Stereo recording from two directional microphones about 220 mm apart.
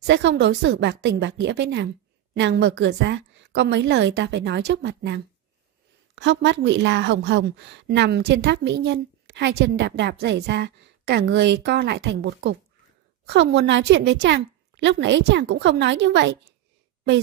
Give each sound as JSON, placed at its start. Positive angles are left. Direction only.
{"t": 0.0, "sound": "a woman's voice", "side_deg": -55}